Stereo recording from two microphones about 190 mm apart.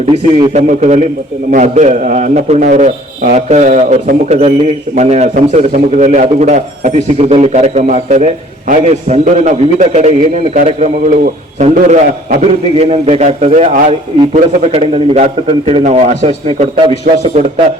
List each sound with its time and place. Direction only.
0.1 s a man's voice: 30° right (ahead or behind)